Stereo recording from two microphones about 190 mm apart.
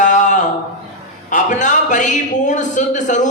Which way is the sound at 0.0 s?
40° left (ahead or behind).